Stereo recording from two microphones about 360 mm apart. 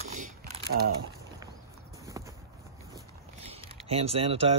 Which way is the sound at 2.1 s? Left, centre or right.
Centre.